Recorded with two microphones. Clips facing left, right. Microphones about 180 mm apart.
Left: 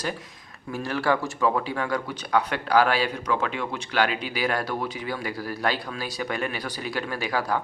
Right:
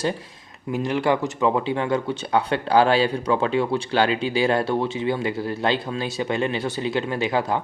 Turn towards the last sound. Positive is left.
turn(degrees=-20)  # may be behind; listen again after turning